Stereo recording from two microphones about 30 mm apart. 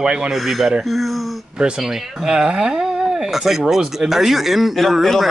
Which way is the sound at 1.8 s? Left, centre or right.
Centre.